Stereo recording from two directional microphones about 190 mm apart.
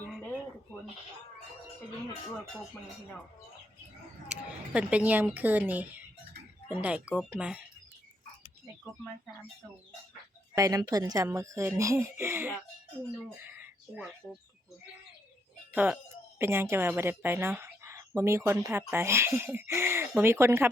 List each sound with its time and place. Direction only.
4.7 s a woman's voice: 5° right (ahead or behind)
10.5 s a woman's voice: 15° right (ahead or behind)
13.3 s chicken: 10° right (ahead or behind)
15.7 s a woman's voice: 5° right (ahead or behind)